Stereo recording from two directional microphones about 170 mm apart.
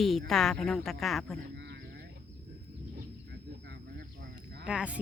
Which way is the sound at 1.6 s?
75° right (ahead or behind).